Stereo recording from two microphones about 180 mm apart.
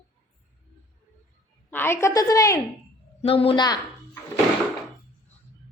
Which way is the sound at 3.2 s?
30° left (ahead or behind).